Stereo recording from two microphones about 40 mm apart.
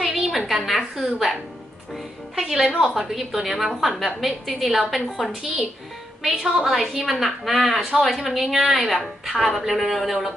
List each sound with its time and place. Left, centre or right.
0.0 s a sound: centre
0.9 s a woman's voice: centre
2.4 s a woman's voice: centre